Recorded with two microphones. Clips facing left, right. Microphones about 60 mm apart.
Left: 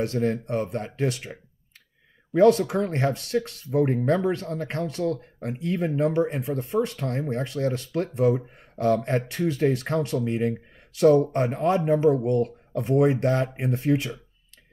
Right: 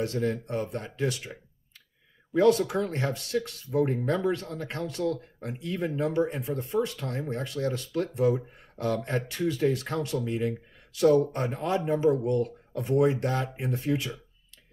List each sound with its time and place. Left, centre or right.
0.0 s speech: left
2.3 s speech: left